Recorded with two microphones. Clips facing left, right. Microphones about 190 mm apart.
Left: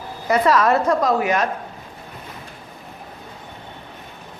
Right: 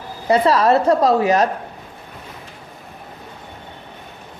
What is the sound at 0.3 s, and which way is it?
A woman's voice, 30° right (ahead or behind).